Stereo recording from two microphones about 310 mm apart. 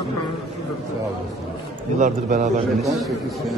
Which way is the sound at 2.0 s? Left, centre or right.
Right.